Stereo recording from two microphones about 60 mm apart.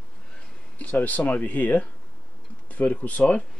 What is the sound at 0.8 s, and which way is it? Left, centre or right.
Speech, left.